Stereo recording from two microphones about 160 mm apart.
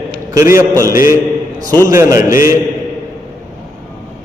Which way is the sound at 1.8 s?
20° right (ahead or behind).